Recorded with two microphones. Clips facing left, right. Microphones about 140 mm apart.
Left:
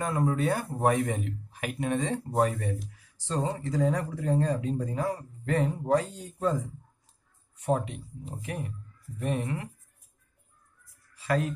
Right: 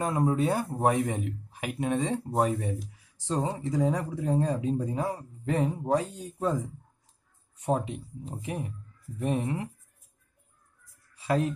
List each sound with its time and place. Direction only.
0.0 s speech: 20° right (ahead or behind)
7.6 s speech: 20° right (ahead or behind)
11.2 s speech: 20° right (ahead or behind)